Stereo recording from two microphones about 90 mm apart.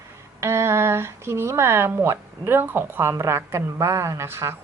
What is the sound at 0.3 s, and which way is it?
Speech, 30° right (ahead or behind).